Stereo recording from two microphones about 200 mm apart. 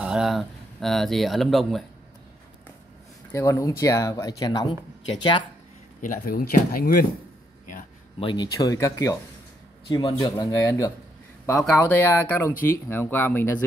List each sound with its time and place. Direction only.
0.0 s speech: 5° right (ahead or behind)
3.3 s speech: 15° left (ahead or behind)
5.9 s speech: 45° left (ahead or behind)
8.2 s speech: 25° left (ahead or behind)